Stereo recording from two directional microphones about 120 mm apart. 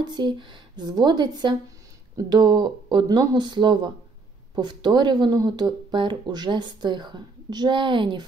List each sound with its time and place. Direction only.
0.0 s speech: 40° right (ahead or behind)